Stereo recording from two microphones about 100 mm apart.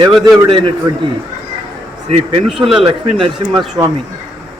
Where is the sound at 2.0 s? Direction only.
90° right.